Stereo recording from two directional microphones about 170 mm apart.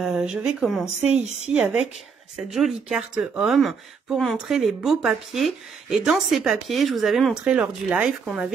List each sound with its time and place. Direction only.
0.0 s speech: 5° right (ahead or behind)
1.1 s a woman's voice: 40° right (ahead or behind)
1.5 s speech: 5° right (ahead or behind)